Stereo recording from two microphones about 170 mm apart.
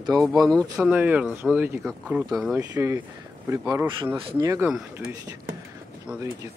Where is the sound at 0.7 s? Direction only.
5° right (ahead or behind).